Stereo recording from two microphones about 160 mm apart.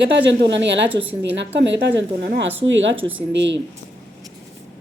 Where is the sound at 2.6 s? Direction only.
35° right (ahead or behind).